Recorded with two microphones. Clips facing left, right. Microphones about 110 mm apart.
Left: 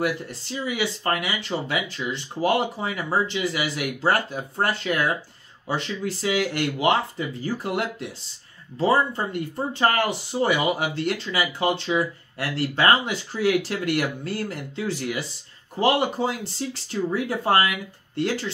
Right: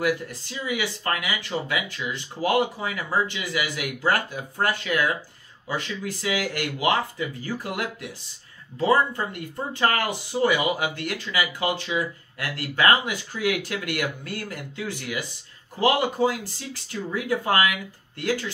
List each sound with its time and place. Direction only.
0.0 s speech: 25° left (ahead or behind)